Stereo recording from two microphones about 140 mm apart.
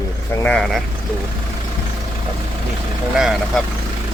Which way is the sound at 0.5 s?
5° left (ahead or behind).